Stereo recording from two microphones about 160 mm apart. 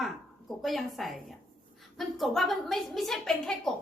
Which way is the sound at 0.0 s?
Centre (ahead or behind).